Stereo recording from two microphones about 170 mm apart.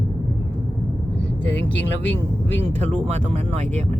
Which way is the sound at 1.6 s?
90° left.